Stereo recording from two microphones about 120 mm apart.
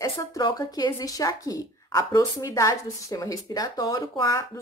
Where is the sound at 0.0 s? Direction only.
25° left (ahead or behind).